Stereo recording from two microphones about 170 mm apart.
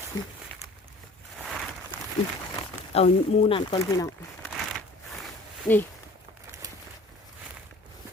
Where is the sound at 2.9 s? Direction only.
35° left (ahead or behind).